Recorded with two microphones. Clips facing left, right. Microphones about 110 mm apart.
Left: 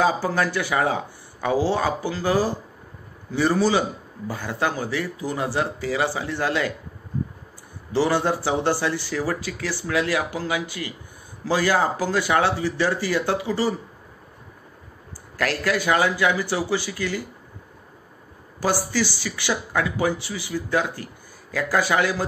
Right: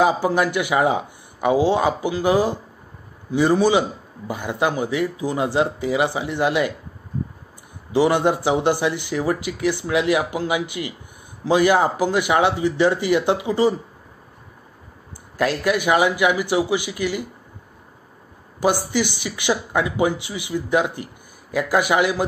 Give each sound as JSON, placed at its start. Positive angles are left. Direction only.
{"t": 0.0, "sound": "a man's voice", "side_deg": -15}
{"t": 7.9, "sound": "speech", "side_deg": -15}
{"t": 15.3, "sound": "a man's voice", "side_deg": -20}
{"t": 18.6, "sound": "speech", "side_deg": -20}